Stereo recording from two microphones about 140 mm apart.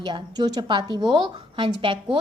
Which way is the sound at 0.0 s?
30° right (ahead or behind).